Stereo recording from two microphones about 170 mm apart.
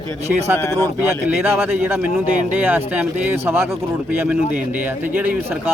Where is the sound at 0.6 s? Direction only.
15° left (ahead or behind).